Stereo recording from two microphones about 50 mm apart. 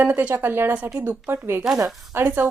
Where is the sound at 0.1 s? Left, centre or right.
Right.